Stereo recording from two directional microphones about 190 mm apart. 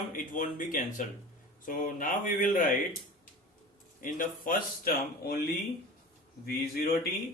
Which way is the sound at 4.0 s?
45° left (ahead or behind).